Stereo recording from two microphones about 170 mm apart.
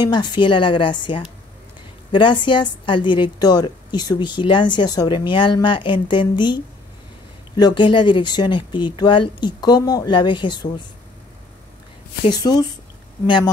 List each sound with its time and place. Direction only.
0.0 s a woman's voice: 25° left (ahead or behind)
12.3 s a woman's voice: 25° left (ahead or behind)